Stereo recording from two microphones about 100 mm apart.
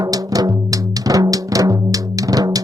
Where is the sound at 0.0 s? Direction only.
35° right (ahead or behind).